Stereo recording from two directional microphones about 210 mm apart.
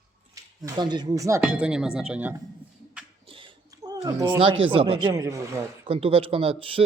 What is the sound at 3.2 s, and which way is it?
A man's voice, 25° right (ahead or behind).